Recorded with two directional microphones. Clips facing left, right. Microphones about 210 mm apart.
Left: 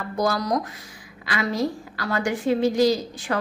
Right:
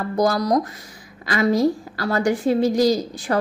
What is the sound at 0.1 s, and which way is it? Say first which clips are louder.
A woman's voice: right 4 dB; 40° right (ahead or behind).